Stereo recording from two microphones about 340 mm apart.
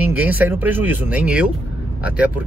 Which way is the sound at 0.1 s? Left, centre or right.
Centre.